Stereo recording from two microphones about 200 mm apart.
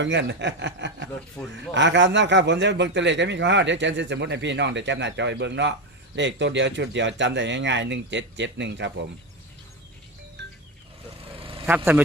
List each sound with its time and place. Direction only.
0.0 s a man's voice: 65° right (ahead or behind)
11.1 s vehicle: 30° right (ahead or behind)